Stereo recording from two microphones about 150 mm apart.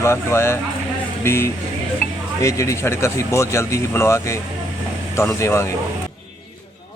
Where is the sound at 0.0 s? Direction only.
20° left (ahead or behind).